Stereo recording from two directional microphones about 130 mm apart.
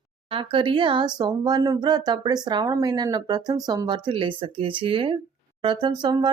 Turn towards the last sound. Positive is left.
turn(degrees=-35)  # may be behind; listen again after turning